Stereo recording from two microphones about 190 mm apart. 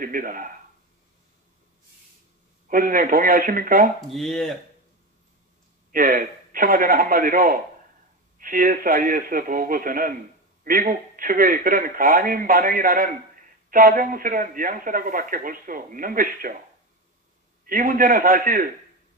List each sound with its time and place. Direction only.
0.0 s a man's voice: 45° right (ahead or behind)
2.7 s a man's voice: 45° right (ahead or behind)
4.1 s speech: centre (ahead or behind)
5.9 s a man's voice: 45° right (ahead or behind)
17.6 s a man's voice: 45° right (ahead or behind)